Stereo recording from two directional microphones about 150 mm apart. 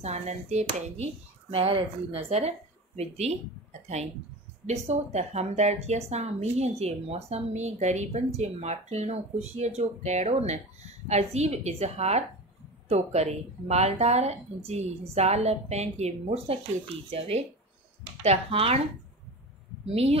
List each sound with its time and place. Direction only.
0.0 s a woman's voice: 45° right (ahead or behind)
4.6 s a woman's voice: 50° right (ahead or behind)
19.9 s a woman's voice: 45° right (ahead or behind)